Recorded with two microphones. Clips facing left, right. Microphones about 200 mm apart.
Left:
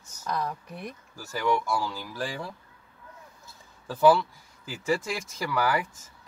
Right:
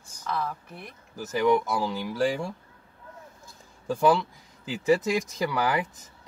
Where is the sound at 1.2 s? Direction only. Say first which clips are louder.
Right 5 dB; 20° right (ahead or behind).